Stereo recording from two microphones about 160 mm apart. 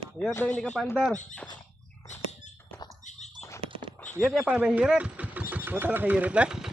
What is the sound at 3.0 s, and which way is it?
Rodents, 45° left (ahead or behind).